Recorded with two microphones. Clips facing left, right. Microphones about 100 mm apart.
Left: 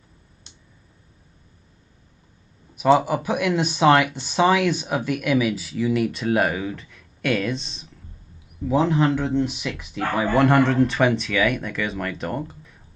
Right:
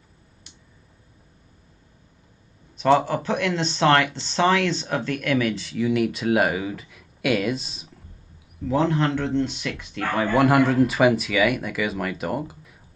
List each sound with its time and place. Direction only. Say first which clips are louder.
2.7 s speech: left 1 dB; 10° left (ahead or behind)
8.6 s speech: left 2 dB; 5° left (ahead or behind)
10.3 s speech: even; 5° right (ahead or behind)